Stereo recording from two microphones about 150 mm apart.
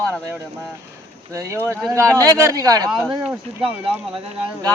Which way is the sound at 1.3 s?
20° right (ahead or behind).